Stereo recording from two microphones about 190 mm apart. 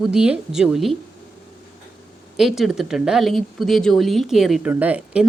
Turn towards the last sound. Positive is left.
turn(degrees=-5)  # may be behind; listen again after turning